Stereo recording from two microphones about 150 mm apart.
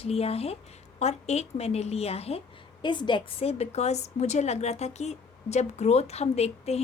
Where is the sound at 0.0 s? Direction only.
40° left (ahead or behind).